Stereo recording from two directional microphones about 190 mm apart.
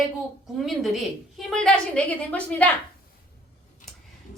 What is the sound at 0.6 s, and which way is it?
A woman's voice, centre (ahead or behind).